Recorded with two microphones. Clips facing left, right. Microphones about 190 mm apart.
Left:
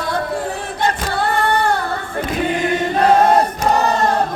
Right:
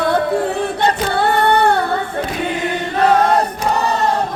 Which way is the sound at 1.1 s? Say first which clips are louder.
Right 4 dB; 60° right (ahead or behind).